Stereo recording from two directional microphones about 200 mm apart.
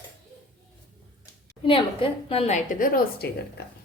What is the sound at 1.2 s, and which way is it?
A woman's voice, 25° left (ahead or behind).